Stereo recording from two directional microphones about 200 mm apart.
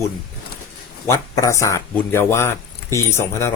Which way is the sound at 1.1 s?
15° left (ahead or behind).